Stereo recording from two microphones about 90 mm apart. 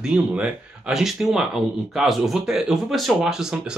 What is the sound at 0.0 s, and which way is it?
Speech, 10° right (ahead or behind).